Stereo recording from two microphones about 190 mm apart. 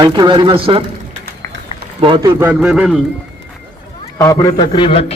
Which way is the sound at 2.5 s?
5° right (ahead or behind).